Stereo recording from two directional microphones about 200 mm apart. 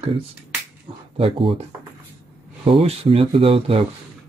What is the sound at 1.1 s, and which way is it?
Speech, 30° right (ahead or behind).